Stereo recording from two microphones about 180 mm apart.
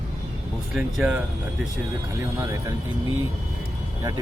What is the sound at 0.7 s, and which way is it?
Speech, 5° right (ahead or behind).